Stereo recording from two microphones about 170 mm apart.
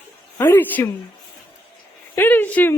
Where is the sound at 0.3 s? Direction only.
15° left (ahead or behind).